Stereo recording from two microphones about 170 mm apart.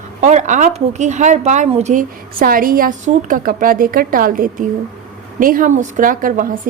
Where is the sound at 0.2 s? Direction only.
45° right (ahead or behind).